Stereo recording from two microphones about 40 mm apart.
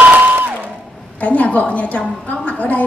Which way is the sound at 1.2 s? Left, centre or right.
Left.